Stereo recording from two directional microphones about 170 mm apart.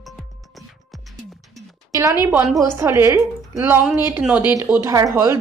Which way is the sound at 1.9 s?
15° right (ahead or behind).